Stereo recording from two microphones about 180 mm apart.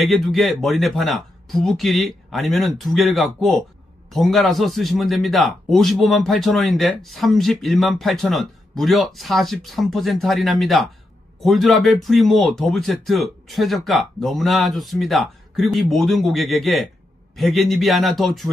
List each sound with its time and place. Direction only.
0.0 s a man's voice: centre (ahead or behind)